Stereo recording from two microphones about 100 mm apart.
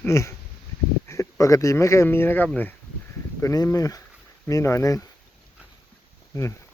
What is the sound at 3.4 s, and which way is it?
Speech, 35° left (ahead or behind).